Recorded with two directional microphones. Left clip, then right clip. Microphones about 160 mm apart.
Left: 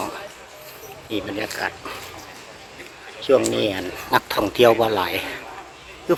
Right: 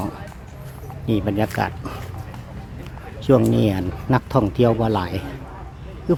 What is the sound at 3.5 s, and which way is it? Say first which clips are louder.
Speech: right 1 dB; 15° right (ahead or behind).